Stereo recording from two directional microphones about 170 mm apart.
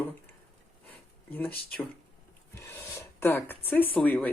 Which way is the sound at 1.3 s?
10° left (ahead or behind).